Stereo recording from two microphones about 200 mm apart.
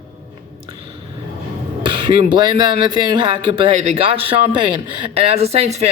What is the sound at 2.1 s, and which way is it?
Speech, 20° right (ahead or behind).